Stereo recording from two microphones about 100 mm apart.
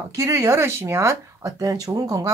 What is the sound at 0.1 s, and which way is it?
Speech, 30° right (ahead or behind).